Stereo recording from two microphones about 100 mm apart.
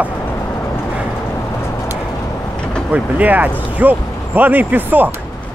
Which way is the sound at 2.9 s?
15° right (ahead or behind).